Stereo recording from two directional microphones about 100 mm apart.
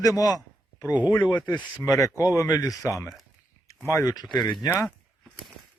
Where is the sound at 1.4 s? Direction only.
45° left (ahead or behind).